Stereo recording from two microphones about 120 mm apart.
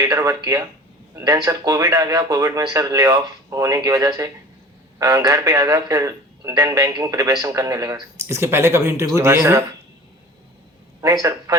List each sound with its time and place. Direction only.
0.0 s a man's voice: 30° right (ahead or behind)
8.2 s a man's voice: 20° right (ahead or behind)
11.0 s a man's voice: 30° right (ahead or behind)